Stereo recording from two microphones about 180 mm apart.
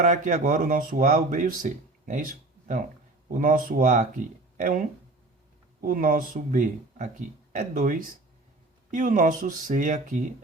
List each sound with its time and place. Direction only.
0.0 s speech: 45° right (ahead or behind)
5.8 s speech: 50° right (ahead or behind)